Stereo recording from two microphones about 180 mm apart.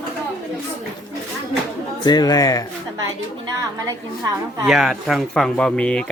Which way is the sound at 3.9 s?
20° right (ahead or behind).